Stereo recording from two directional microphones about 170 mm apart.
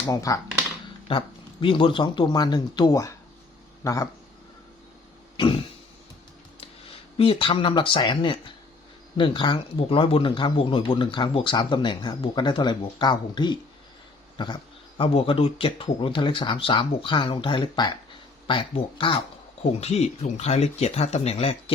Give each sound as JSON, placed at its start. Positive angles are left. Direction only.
{"t": 0.1, "sound": "speech", "side_deg": 20}
{"t": 1.1, "sound": "speech", "side_deg": 35}
{"t": 5.4, "sound": "a sound", "side_deg": 30}
{"t": 7.2, "sound": "speech", "side_deg": 30}